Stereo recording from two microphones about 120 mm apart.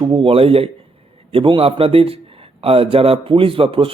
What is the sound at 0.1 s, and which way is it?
A man's voice, 50° right (ahead or behind).